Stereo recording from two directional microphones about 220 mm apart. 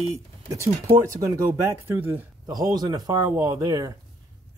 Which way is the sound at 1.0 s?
15° right (ahead or behind).